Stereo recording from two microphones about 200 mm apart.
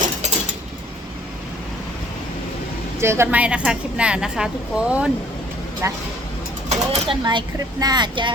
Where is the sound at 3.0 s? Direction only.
15° right (ahead or behind).